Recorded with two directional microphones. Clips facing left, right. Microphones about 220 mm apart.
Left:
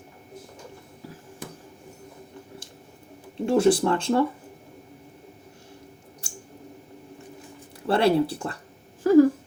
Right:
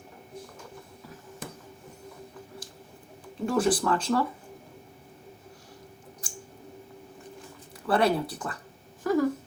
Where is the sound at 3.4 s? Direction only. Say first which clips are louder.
Left 5 dB; 25° left (ahead or behind).